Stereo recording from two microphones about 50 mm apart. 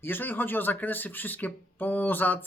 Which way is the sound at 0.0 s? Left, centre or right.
Left.